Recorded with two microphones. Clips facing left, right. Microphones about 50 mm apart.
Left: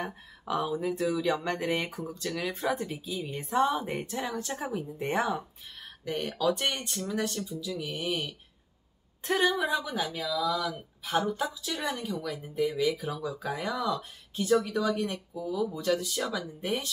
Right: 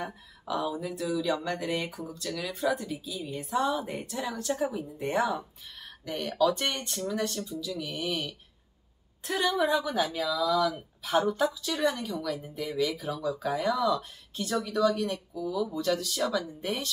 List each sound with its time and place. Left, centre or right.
0.0 s speech: left; by 8.2 s centre
9.2 s speech: left
9.6 s speech: centre; by 15.6 s left
15.7 s speech: centre